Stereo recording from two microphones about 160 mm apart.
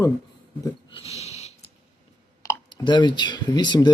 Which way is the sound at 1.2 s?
45° left (ahead or behind).